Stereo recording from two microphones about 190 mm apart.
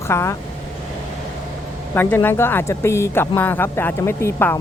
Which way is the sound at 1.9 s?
10° left (ahead or behind).